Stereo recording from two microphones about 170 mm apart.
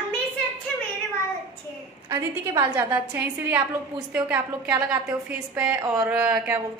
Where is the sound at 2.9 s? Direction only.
10° right (ahead or behind).